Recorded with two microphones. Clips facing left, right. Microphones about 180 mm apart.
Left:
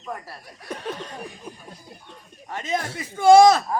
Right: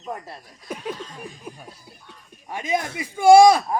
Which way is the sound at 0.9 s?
70° left (ahead or behind).